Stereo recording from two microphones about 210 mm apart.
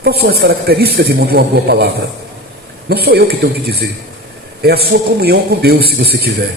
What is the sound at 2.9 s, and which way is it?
A man's voice, 50° right (ahead or behind).